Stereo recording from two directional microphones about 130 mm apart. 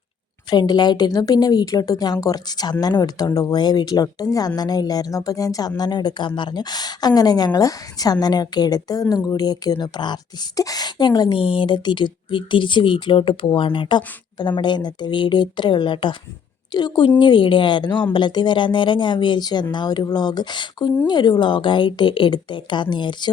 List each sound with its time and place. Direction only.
0.5 s speech: 30° left (ahead or behind)